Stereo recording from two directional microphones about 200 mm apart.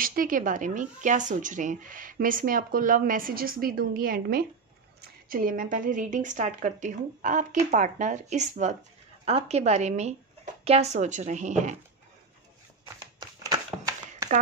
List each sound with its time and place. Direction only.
0.0 s a woman's voice: 45° right (ahead or behind)
13.2 s crumpling: 15° right (ahead or behind)